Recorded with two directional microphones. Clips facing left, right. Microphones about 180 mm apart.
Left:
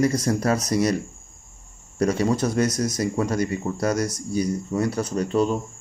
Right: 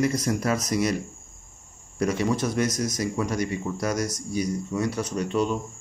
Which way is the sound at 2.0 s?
35° left (ahead or behind).